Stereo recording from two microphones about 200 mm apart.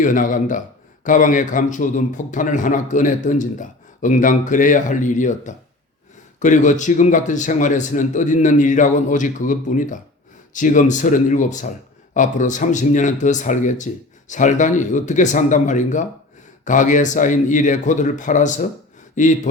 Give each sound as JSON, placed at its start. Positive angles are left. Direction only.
{"t": 0.0, "sound": "a man's voice", "side_deg": 40}